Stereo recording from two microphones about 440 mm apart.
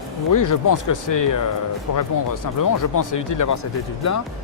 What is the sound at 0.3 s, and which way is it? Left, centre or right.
Speech, left.